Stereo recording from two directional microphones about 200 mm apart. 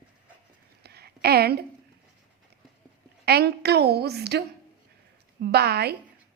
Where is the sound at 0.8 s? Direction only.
55° right (ahead or behind).